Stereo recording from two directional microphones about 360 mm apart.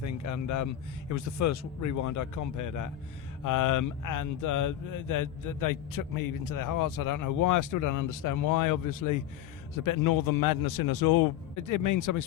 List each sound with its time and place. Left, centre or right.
0.0 s a man's voice: left